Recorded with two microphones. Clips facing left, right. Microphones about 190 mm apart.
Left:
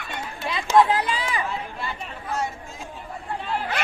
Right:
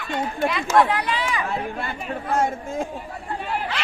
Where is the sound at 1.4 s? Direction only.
55° right (ahead or behind).